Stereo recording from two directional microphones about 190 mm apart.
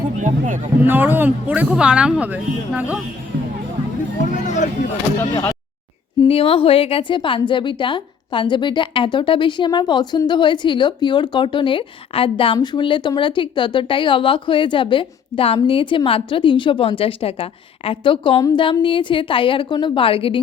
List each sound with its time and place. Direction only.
0.2 s speech: 45° right (ahead or behind)
0.8 s speech: 10° right (ahead or behind)
4.4 s speech: 40° left (ahead or behind)
5.3 s speech: 15° left (ahead or behind)
6.2 s a woman's voice: 30° left (ahead or behind)